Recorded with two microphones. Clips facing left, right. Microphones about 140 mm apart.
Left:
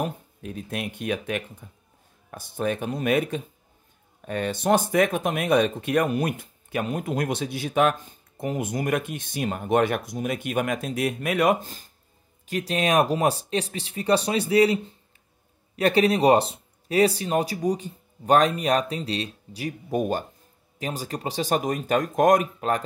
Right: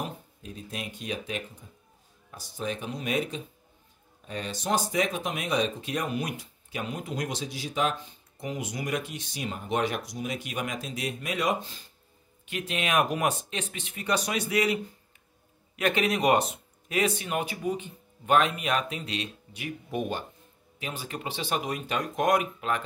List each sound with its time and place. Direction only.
0.0 s speech: 60° left (ahead or behind); by 22.8 s 40° left (ahead or behind)